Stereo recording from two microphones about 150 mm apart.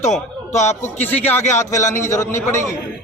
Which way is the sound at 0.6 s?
50° left (ahead or behind).